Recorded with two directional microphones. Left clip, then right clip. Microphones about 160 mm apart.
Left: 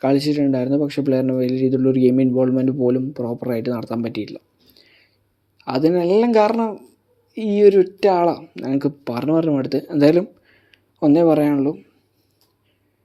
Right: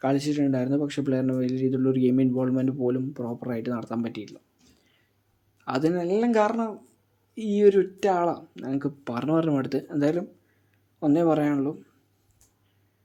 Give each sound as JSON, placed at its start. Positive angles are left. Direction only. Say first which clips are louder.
{"t": 0.0, "sound": "speech", "louder": "left 7 dB", "side_deg": 30}
{"t": 5.5, "sound": "speech", "louder": "left 7 dB", "side_deg": 25}
{"t": 6.0, "sound": "speech", "louder": "left 9 dB", "side_deg": 45}
{"t": 6.2, "sound": "speech", "louder": "left 7 dB", "side_deg": 30}
{"t": 9.0, "sound": "speech", "louder": "left 5 dB", "side_deg": 25}
{"t": 9.9, "sound": "speech", "louder": "left 12 dB", "side_deg": 40}
{"t": 11.1, "sound": "speech", "louder": "left 7 dB", "side_deg": 30}